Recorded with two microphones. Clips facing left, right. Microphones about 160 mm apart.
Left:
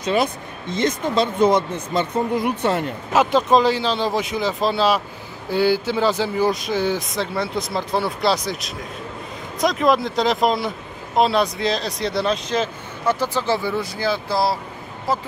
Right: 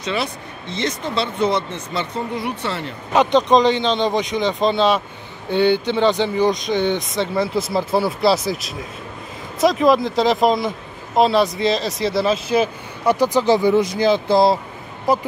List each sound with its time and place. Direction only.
0.0 s speech: 45° left (ahead or behind)
3.1 s speech: 5° left (ahead or behind); by 15.2 s 15° right (ahead or behind)